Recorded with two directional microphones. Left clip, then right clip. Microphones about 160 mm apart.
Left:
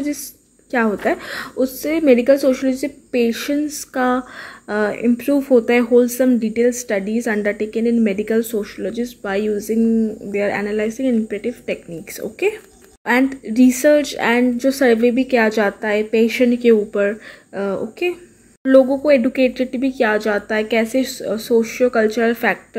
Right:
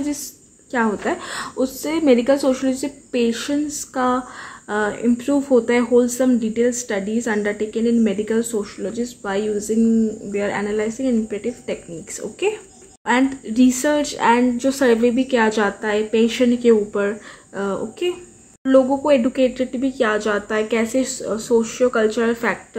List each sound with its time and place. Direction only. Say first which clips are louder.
0.7 s a woman's voice: left 3 dB; 25° left (ahead or behind)
19.3 s speech: left 2 dB; 40° right (ahead or behind)
20.1 s a woman's voice: left 2 dB; 25° left (ahead or behind)